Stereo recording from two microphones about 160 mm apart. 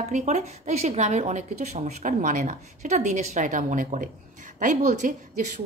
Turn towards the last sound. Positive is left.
turn(degrees=-50)  # may be behind; listen again after turning